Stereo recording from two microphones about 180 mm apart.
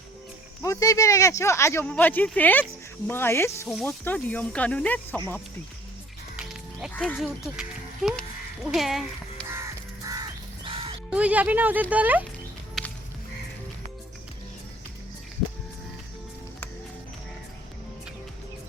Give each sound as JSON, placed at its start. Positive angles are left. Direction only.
{"t": 0.6, "sound": "speech", "side_deg": 20}
{"t": 6.3, "sound": "mechanisms", "side_deg": -5}
{"t": 6.9, "sound": "speech", "side_deg": 10}
{"t": 7.2, "sound": "speech", "side_deg": 0}
{"t": 10.0, "sound": "crow", "side_deg": -20}
{"t": 11.1, "sound": "speech", "side_deg": -10}